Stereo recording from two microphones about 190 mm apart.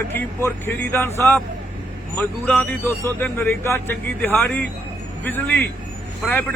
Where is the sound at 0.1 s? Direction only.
10° left (ahead or behind).